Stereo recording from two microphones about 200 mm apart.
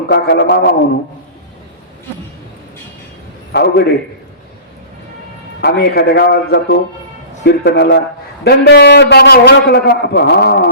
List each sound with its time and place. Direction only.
0.1 s a man's voice: 55° left (ahead or behind)
3.5 s a man's voice: 55° left (ahead or behind)
5.6 s a man's voice: 55° left (ahead or behind)